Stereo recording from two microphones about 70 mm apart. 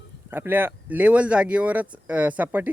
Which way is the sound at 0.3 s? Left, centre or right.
Right.